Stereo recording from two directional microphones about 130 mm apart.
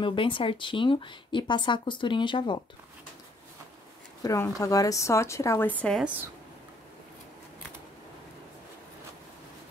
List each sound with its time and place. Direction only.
0.0 s speech: 40° left (ahead or behind)
4.2 s a woman's voice: 25° left (ahead or behind)
5.7 s a woman's voice: 10° left (ahead or behind)